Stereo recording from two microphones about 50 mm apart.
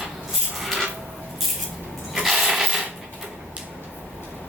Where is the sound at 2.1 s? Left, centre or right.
Centre.